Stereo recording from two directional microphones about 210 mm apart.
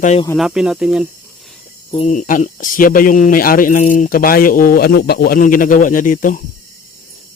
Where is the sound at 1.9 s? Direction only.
35° left (ahead or behind).